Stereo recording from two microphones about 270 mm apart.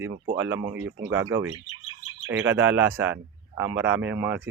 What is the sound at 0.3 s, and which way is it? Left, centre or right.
Speech, centre.